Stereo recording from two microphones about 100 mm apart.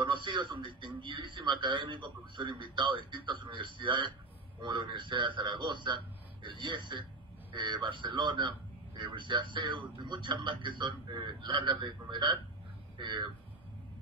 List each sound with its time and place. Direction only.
0.0 s a man's voice: 50° right (ahead or behind)